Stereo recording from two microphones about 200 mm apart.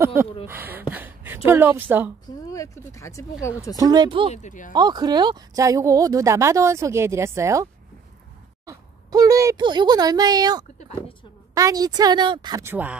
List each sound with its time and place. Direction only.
0.0 s a woman's voice: 10° right (ahead or behind)
2.2 s speech: 15° left (ahead or behind)
3.7 s a woman's voice: 20° right (ahead or behind)
4.3 s speech: 35° left (ahead or behind)
4.7 s speech: 20° right (ahead or behind)
8.6 s a woman's voice: 15° right (ahead or behind)